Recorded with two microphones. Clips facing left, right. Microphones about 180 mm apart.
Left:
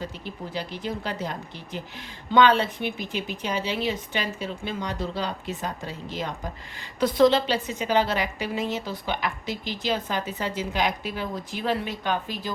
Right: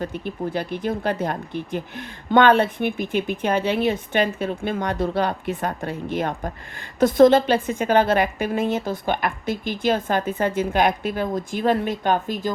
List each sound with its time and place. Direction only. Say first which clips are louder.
0.0 s speech: right 8 dB; 55° right (ahead or behind)